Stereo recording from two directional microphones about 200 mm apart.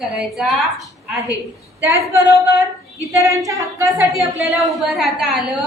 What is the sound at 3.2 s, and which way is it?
Female singing, 15° right (ahead or behind).